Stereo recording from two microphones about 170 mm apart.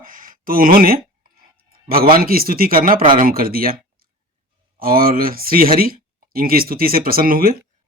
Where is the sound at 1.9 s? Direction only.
60° right (ahead or behind).